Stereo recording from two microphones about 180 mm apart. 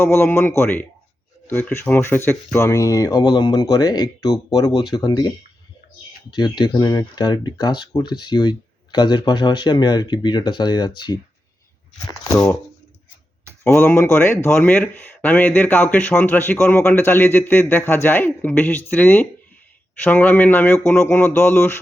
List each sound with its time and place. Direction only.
0.0 s speech: 10° left (ahead or behind)
6.3 s speech: 25° left (ahead or behind)
13.7 s speech: 15° left (ahead or behind)